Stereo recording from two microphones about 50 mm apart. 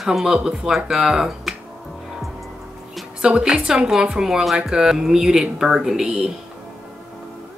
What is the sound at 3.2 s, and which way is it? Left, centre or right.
A woman's voice, centre.